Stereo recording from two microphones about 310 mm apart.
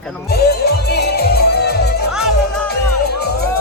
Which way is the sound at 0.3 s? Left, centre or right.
Left.